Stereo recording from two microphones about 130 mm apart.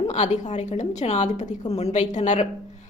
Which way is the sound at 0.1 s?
65° left (ahead or behind).